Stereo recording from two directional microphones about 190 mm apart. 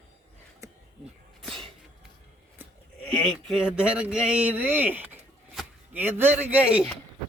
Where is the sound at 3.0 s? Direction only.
5° left (ahead or behind).